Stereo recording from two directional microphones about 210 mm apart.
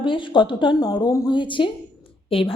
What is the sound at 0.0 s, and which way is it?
A woman's voice, 25° left (ahead or behind).